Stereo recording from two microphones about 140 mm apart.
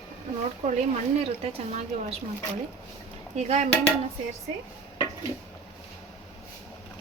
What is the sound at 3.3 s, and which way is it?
Speech, 50° right (ahead or behind).